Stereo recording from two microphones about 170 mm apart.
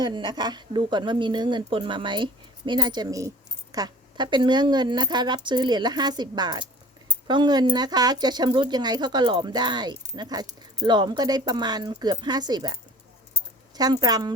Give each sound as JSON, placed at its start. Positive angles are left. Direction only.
{"t": 0.0, "sound": "a woman's voice", "side_deg": -25}
{"t": 13.7, "sound": "a woman's voice", "side_deg": -20}